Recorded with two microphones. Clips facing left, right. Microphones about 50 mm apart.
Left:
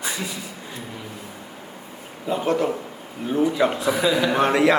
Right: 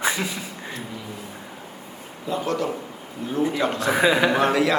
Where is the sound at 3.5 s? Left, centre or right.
Centre.